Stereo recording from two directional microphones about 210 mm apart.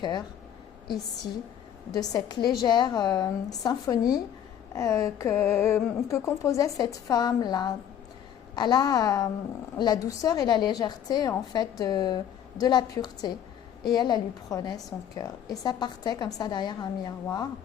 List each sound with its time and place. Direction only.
0.0 s a woman's voice: 20° left (ahead or behind)
1.9 s a woman's voice: 15° left (ahead or behind)